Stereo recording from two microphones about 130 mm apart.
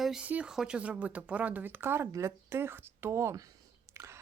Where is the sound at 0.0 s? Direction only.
5° right (ahead or behind).